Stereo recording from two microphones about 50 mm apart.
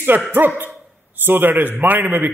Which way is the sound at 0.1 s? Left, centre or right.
Right.